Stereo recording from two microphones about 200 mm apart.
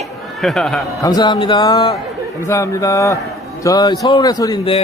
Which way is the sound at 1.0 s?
20° left (ahead or behind).